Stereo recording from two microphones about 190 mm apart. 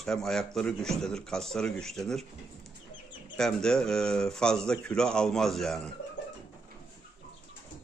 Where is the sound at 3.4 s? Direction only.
5° left (ahead or behind).